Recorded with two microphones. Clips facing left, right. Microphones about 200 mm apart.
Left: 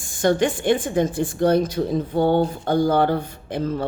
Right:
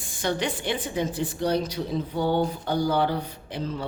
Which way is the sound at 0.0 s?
45° left (ahead or behind).